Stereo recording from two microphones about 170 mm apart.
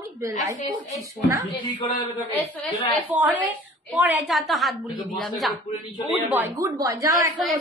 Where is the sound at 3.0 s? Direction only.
10° right (ahead or behind).